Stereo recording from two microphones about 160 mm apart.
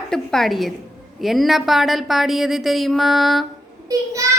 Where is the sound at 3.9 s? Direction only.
20° right (ahead or behind).